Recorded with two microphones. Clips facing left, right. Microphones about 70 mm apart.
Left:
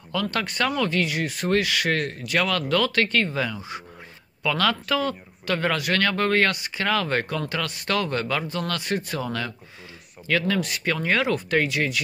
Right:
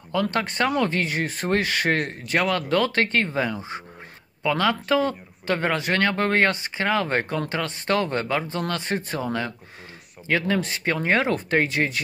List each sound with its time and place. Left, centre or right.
0.1 s speech: right